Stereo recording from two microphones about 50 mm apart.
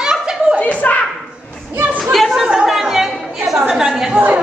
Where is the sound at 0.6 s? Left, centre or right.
Left.